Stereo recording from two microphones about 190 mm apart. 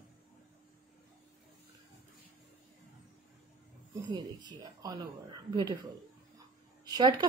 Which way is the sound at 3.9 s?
20° right (ahead or behind).